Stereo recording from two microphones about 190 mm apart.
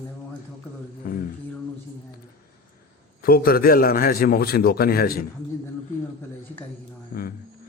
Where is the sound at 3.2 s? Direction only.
50° left (ahead or behind).